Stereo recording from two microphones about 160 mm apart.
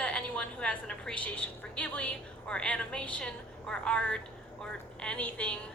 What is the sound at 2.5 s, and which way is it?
A woman's voice, 5° left (ahead or behind).